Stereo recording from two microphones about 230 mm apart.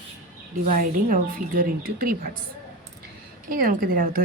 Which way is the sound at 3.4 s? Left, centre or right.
Right.